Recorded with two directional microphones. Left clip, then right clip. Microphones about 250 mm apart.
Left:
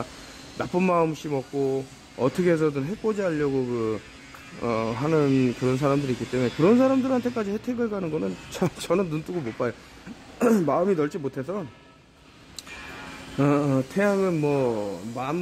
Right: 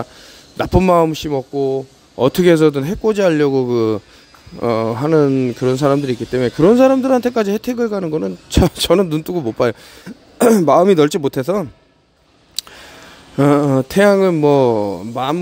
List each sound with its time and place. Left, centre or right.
0.6 s speech: right
12.6 s a sound: right
13.4 s speech: right